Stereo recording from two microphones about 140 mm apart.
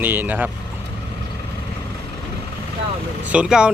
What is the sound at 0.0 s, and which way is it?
Speech, 15° right (ahead or behind).